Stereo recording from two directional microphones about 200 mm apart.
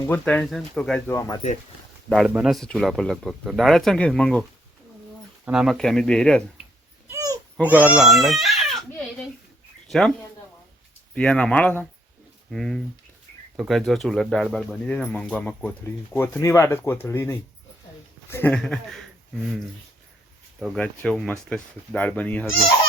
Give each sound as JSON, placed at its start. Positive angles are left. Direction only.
{"t": 0.0, "sound": "speech", "side_deg": 10}
{"t": 2.0, "sound": "speech", "side_deg": 0}
{"t": 5.5, "sound": "speech", "side_deg": 0}
{"t": 7.1, "sound": "babbling", "side_deg": -15}
{"t": 7.7, "sound": "baby cry", "side_deg": -5}
{"t": 11.1, "sound": "speech", "side_deg": 5}